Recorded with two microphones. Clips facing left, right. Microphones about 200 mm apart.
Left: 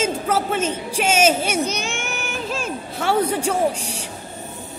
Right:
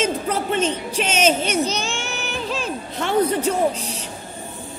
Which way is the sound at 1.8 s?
55° left (ahead or behind).